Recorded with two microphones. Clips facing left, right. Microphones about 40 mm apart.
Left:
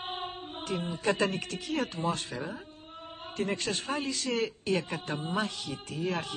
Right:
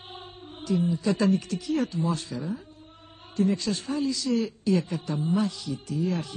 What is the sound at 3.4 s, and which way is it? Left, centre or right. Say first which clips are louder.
Speech: right 6 dB; left.